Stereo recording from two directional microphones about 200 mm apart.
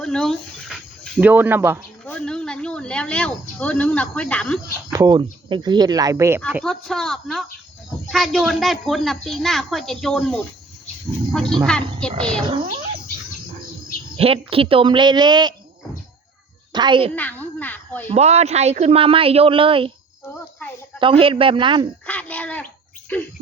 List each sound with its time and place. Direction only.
0.0 s a sound: 5° left (ahead or behind)
1.2 s speech: 10° right (ahead or behind)
2.0 s speech: 5° left (ahead or behind)
4.9 s speech: 20° right (ahead or behind)
6.5 s a child's voice: centre (ahead or behind)
14.2 s speech: 30° right (ahead or behind)
16.7 s speech: 25° right (ahead or behind)
17.2 s speech: 10° left (ahead or behind)
18.1 s speech: 35° right (ahead or behind)
20.2 s insect: 10° left (ahead or behind)
21.0 s speech: 25° right (ahead or behind)
22.0 s speech: 5° left (ahead or behind)